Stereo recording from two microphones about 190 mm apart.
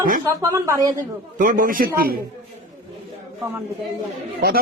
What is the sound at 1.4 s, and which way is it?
Speech, 45° right (ahead or behind).